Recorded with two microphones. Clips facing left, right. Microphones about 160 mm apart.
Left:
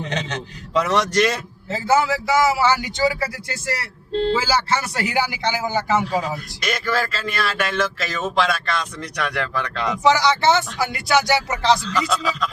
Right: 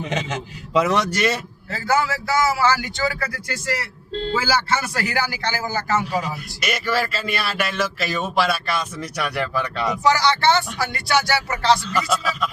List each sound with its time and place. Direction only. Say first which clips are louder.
0.0 s speech: right 1 dB; 10° right (ahead or behind)
1.7 s speech: left 3 dB; 20° left (ahead or behind)
6.6 s speech: right 1 dB; 5° right (ahead or behind)
10.0 s speech: left 2 dB; 20° left (ahead or behind)
11.9 s speech: even; 5° right (ahead or behind)